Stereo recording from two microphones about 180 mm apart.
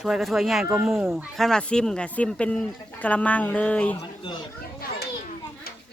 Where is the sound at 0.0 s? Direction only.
Centre (ahead or behind).